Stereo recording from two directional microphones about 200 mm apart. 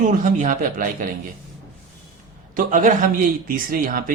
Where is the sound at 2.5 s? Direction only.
40° right (ahead or behind).